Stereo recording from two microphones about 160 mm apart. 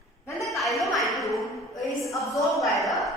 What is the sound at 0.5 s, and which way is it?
Music, centre (ahead or behind).